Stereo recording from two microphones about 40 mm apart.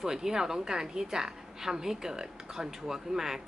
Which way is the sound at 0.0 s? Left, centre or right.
Centre.